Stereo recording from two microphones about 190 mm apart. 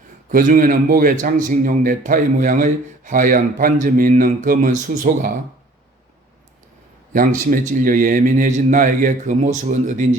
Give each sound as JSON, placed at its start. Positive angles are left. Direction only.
{"t": 0.3, "sound": "a man's voice", "side_deg": -45}
{"t": 7.1, "sound": "a man's voice", "side_deg": -45}